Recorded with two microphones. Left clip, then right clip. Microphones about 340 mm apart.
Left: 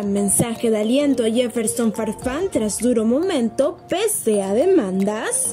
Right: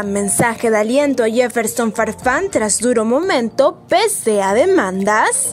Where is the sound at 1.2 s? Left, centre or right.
Centre.